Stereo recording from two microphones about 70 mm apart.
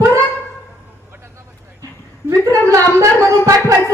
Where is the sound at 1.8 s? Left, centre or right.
Right.